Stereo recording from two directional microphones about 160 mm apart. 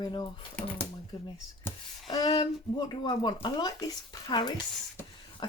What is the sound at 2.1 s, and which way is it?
Speech, 25° left (ahead or behind).